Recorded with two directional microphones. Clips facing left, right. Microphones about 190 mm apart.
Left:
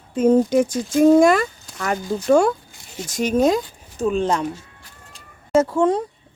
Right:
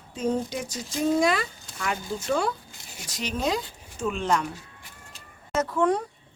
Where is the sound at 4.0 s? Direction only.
35° left (ahead or behind).